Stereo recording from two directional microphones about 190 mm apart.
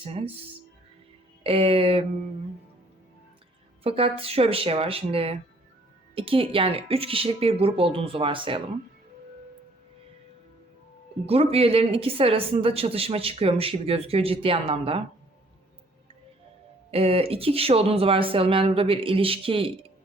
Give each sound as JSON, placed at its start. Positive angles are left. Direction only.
{"t": 0.0, "sound": "a woman's voice", "side_deg": -30}
{"t": 1.5, "sound": "speech", "side_deg": -30}
{"t": 3.8, "sound": "a woman's voice", "side_deg": -30}
{"t": 11.3, "sound": "a woman's voice", "side_deg": -30}
{"t": 16.9, "sound": "speech", "side_deg": -30}